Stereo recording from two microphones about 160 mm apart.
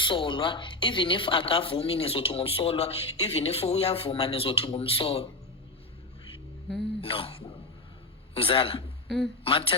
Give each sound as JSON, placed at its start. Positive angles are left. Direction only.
{"t": 0.0, "sound": "speech", "side_deg": 30}
{"t": 7.0, "sound": "a man's voice", "side_deg": 35}
{"t": 9.0, "sound": "speech", "side_deg": 0}
{"t": 9.4, "sound": "speech", "side_deg": 35}